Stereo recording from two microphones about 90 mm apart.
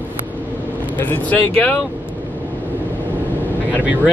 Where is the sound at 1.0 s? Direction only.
20° left (ahead or behind).